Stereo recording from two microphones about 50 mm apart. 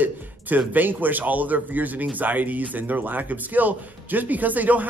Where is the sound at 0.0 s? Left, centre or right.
Right.